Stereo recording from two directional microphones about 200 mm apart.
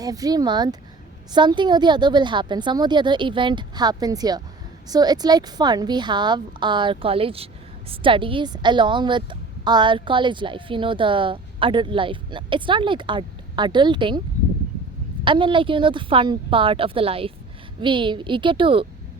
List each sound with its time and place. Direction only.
0.0 s a woman's voice: 20° right (ahead or behind)
15.2 s a woman's voice: 25° right (ahead or behind)